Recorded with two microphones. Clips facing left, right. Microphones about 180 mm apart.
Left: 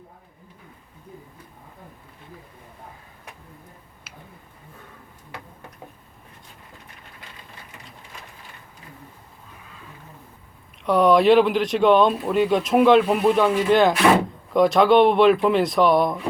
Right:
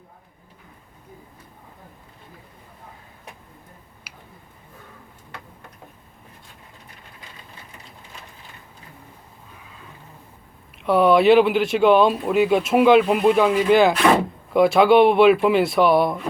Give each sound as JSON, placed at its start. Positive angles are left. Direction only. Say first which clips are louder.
{"t": 10.8, "sound": "speech", "louder": "right 1 dB", "side_deg": -5}